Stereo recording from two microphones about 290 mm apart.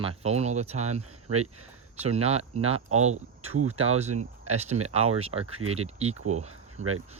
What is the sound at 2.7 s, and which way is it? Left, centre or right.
Speech, right.